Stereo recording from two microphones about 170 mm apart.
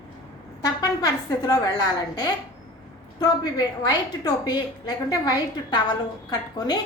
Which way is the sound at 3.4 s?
25° left (ahead or behind).